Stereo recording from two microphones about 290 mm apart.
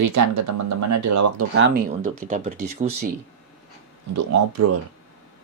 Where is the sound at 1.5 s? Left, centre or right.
Right.